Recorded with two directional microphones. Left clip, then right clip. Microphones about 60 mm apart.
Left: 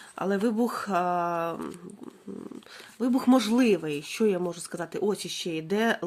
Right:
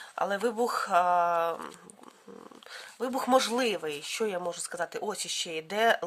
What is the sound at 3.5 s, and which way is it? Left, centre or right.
Speech, right.